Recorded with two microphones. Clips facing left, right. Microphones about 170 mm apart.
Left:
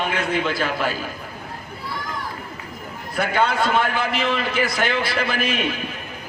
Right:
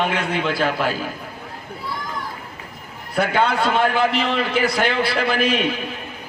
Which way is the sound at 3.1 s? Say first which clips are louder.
Right 2 dB; 45° left (ahead or behind).